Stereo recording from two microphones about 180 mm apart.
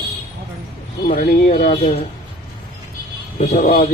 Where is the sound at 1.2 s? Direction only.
55° left (ahead or behind).